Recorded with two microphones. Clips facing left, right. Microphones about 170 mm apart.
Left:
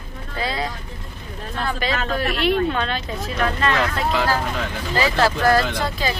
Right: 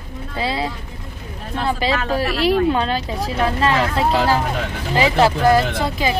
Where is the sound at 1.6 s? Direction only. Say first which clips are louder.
Right 4 dB; 30° right (ahead or behind).